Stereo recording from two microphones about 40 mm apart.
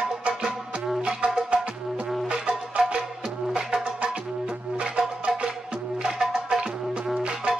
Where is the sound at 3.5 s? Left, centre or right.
Right.